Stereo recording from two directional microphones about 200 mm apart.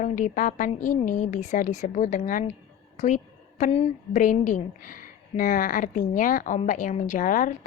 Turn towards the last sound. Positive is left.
turn(degrees=40)  # may be behind; listen again after turning